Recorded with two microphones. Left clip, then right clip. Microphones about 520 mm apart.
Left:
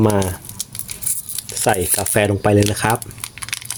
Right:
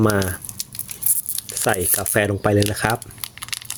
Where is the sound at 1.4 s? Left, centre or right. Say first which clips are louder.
Left 4 dB; right.